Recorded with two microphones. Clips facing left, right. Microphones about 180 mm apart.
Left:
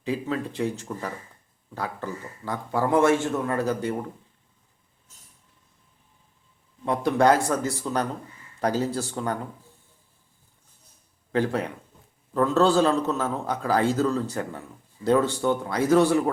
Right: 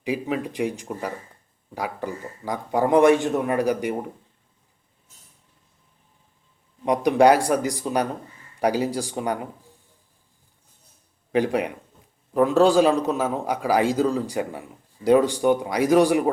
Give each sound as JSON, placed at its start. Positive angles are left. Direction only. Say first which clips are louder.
{"t": 0.0, "sound": "a man's voice", "louder": "right 2 dB", "side_deg": -15}
{"t": 6.8, "sound": "a man's voice", "louder": "right 4 dB", "side_deg": -15}
{"t": 11.3, "sound": "a man's voice", "louder": "right 3 dB", "side_deg": -15}